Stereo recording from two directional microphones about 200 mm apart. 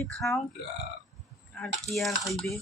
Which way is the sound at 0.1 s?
Centre (ahead or behind).